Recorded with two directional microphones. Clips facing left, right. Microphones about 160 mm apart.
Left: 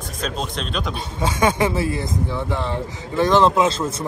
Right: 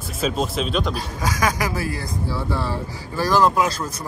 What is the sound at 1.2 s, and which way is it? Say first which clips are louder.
Speech: left 5 dB; 25° left (ahead or behind).